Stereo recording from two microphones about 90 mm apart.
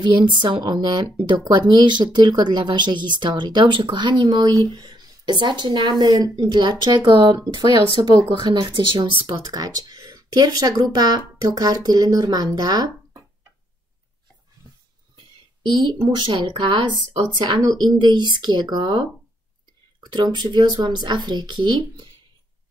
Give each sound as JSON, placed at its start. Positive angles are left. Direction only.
{"t": 0.0, "sound": "a woman's voice", "side_deg": -60}
{"t": 9.4, "sound": "speech", "side_deg": -45}
{"t": 15.6, "sound": "speech", "side_deg": -60}
{"t": 17.6, "sound": "speech", "side_deg": -50}
{"t": 20.3, "sound": "speech", "side_deg": -55}